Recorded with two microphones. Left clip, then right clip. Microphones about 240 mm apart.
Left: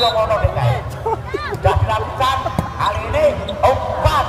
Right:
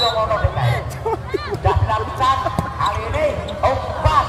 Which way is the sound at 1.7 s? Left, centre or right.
Left.